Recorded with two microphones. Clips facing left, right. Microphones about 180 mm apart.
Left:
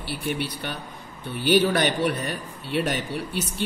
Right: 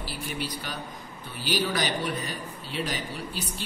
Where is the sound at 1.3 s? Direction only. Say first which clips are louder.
Left 8 dB; 60° left (ahead or behind).